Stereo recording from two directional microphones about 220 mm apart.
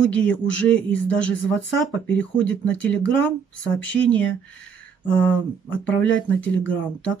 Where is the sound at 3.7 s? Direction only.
5° left (ahead or behind).